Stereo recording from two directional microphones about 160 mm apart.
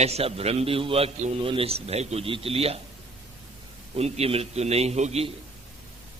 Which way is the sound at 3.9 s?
40° right (ahead or behind).